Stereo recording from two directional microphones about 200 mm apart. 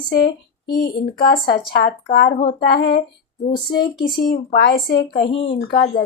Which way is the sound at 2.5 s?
50° left (ahead or behind).